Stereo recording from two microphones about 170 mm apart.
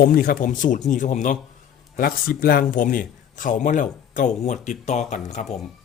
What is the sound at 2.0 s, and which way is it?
Speech, 60° left (ahead or behind).